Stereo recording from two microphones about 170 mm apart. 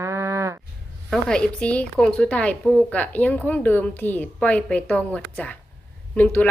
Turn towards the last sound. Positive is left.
turn(degrees=10)  # may be behind; listen again after turning